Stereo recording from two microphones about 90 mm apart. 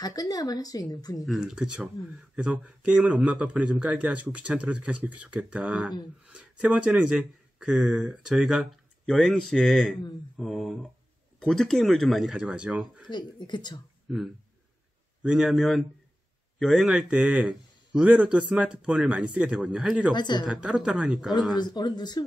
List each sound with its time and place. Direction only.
0.0 s a woman's voice: 45° left (ahead or behind)
1.2 s speech: 5° right (ahead or behind)
2.3 s a man's voice: 15° right (ahead or behind)
9.0 s speech: 10° left (ahead or behind); by 13.0 s 10° right (ahead or behind)
13.1 s speech: 55° left (ahead or behind)
14.0 s a man's voice: centre (ahead or behind)
20.2 s speech: 55° left (ahead or behind)
20.4 s a man's voice: 10° right (ahead or behind)
21.5 s a woman's voice: 50° left (ahead or behind)